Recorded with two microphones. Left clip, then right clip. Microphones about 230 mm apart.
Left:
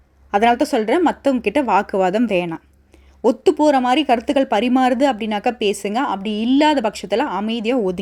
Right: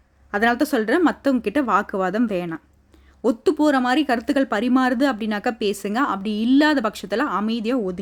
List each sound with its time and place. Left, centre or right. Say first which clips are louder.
0.3 s speech: left 4 dB; centre